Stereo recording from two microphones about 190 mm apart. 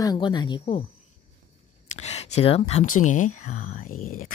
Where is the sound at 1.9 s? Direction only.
35° left (ahead or behind).